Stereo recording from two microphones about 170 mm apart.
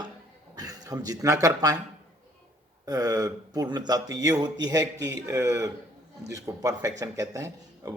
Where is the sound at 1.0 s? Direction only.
20° right (ahead or behind).